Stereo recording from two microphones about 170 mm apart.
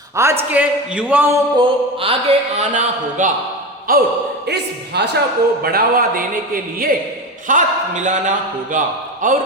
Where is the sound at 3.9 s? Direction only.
60° right (ahead or behind).